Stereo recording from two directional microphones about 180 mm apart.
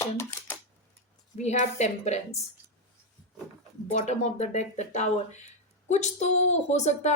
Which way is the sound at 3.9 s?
40° left (ahead or behind).